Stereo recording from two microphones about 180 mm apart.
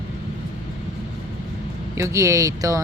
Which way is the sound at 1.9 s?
15° right (ahead or behind).